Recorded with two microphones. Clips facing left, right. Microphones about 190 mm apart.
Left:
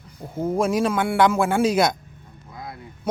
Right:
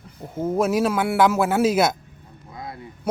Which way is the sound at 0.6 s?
5° right (ahead or behind).